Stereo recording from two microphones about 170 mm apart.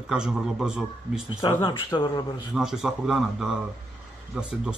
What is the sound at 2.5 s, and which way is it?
Speech, centre (ahead or behind).